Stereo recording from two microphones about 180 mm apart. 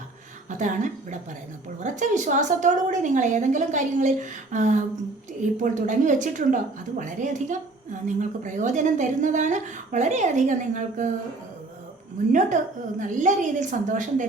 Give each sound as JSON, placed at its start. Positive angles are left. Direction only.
{"t": 0.5, "sound": "a woman's voice", "side_deg": -45}
{"t": 12.3, "sound": "a woman's voice", "side_deg": -45}